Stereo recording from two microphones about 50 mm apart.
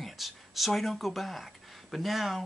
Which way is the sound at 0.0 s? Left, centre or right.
Centre.